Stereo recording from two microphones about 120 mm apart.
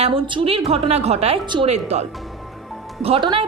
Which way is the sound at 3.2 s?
45° right (ahead or behind).